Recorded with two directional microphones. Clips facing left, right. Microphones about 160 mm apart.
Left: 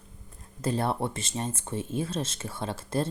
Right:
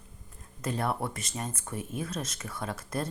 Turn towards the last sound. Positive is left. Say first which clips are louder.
# left 4 dB
turn(degrees=25)  # may be behind; listen again after turning